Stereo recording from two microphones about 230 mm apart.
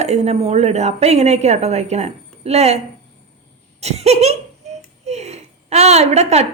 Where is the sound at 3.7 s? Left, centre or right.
Right.